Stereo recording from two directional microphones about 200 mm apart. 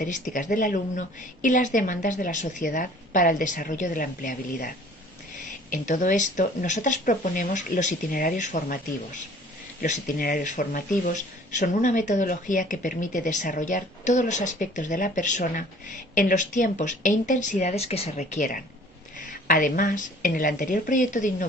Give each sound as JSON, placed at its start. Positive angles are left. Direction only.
{"t": 0.0, "sound": "speech", "side_deg": 40}